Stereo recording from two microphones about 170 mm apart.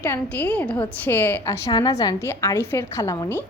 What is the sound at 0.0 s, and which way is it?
Speech, 10° left (ahead or behind).